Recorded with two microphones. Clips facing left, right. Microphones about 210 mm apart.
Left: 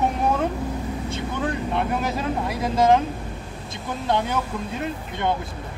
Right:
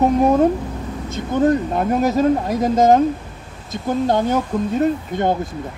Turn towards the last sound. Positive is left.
turn(degrees=-40)  # may be behind; listen again after turning